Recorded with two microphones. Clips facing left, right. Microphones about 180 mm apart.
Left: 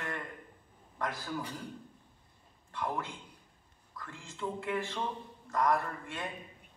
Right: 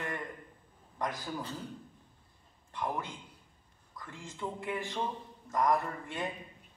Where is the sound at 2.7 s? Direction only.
20° right (ahead or behind).